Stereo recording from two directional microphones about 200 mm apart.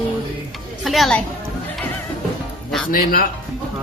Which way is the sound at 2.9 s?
45° left (ahead or behind).